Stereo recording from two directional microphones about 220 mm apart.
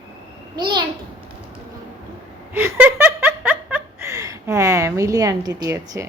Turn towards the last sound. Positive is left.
turn(degrees=-15)  # may be behind; listen again after turning